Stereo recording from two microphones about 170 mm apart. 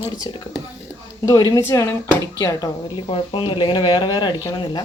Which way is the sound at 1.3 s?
20° left (ahead or behind).